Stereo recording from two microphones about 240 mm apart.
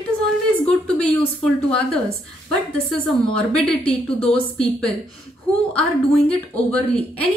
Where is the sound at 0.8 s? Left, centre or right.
Centre.